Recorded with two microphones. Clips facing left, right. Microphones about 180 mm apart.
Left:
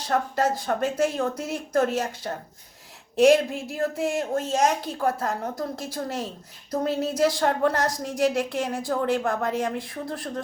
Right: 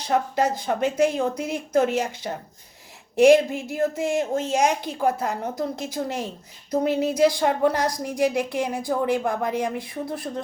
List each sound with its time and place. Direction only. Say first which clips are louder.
0.0 s speech: right 2 dB; 15° right (ahead or behind)